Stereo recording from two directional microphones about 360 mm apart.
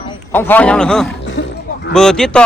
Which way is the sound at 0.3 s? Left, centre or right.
Centre.